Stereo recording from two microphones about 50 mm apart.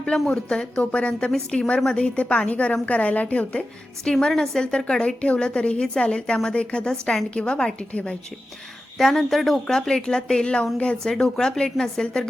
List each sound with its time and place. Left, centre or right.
0.0 s a woman's voice: centre
4.0 s a woman's voice: centre
9.0 s a woman's voice: centre
11.0 s a woman's voice: centre